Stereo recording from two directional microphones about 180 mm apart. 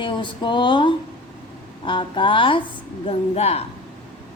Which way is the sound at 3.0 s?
35° left (ahead or behind).